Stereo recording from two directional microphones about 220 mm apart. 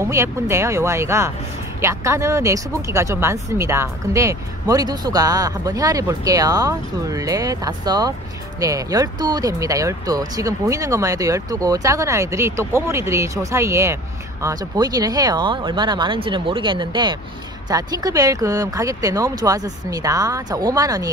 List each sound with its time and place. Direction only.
0.0 s speech: 15° right (ahead or behind)